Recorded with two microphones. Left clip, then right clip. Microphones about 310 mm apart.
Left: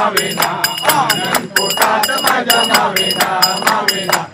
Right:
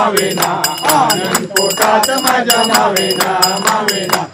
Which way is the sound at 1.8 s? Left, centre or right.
Right.